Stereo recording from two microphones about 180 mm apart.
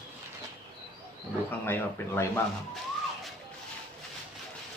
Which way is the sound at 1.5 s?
10° left (ahead or behind).